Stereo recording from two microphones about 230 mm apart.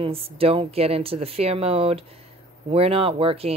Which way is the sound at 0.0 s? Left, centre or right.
Right.